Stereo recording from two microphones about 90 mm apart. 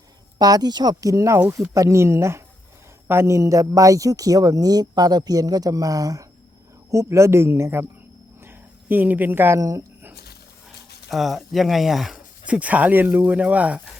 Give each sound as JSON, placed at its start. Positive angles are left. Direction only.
{"t": 0.3, "sound": "speech", "side_deg": -45}
{"t": 1.1, "sound": "a woman's voice", "side_deg": -35}
{"t": 8.4, "sound": "a sound", "side_deg": -25}
{"t": 9.6, "sound": "a woman's voice", "side_deg": -40}
{"t": 11.1, "sound": "speech", "side_deg": 0}
{"t": 12.5, "sound": "speech", "side_deg": -15}